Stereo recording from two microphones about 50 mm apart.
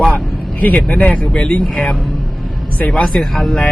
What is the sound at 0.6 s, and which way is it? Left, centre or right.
Speech, left.